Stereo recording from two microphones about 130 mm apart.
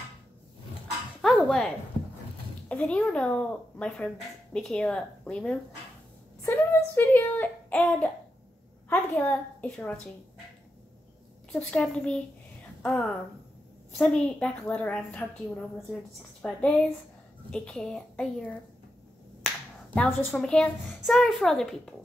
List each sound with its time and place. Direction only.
1.2 s music: centre (ahead or behind)
2.7 s a woman's voice: 10° left (ahead or behind)
6.4 s a woman's voice: 15° left (ahead or behind)
11.5 s a woman's voice: 5° left (ahead or behind)
13.9 s a woman's voice: 5° left (ahead or behind)
19.4 s finger snapping: 10° left (ahead or behind)
20.2 s a woman's voice: 15° left (ahead or behind)
20.4 s a child's voice: 5° left (ahead or behind)